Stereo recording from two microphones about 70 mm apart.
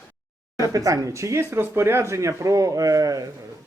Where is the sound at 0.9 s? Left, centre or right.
Right.